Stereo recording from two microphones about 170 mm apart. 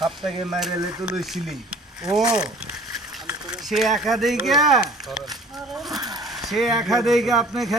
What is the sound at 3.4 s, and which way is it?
Speech, centre (ahead or behind).